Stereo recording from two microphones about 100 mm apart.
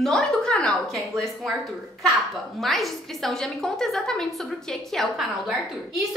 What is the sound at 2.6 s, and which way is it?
A woman's voice, centre (ahead or behind).